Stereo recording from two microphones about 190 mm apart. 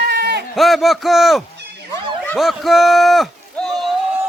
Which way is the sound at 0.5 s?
Centre (ahead or behind).